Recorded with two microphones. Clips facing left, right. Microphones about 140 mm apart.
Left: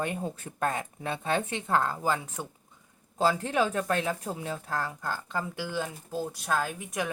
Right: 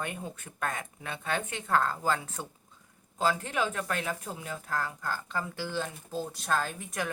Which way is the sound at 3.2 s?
30° left (ahead or behind).